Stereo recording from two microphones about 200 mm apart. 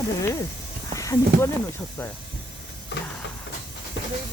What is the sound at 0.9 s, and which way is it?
Speech, 15° left (ahead or behind).